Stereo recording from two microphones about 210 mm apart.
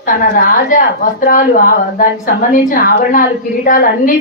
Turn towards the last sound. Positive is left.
turn(degrees=40)  # may be behind; listen again after turning